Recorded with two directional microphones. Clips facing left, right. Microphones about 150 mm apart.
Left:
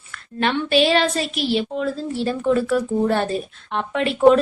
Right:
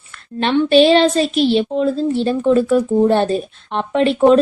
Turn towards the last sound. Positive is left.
turn(degrees=-25)  # may be behind; listen again after turning